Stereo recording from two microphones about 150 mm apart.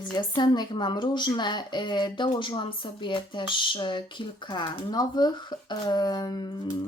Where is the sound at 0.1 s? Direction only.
30° left (ahead or behind).